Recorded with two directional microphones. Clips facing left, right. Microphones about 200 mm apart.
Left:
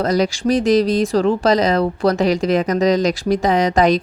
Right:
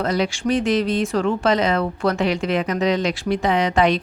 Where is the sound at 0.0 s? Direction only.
40° left (ahead or behind).